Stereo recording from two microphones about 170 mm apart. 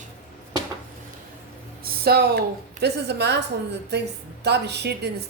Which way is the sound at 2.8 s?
80° right.